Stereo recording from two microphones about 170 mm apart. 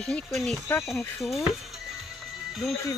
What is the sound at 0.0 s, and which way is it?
Speech, 5° left (ahead or behind).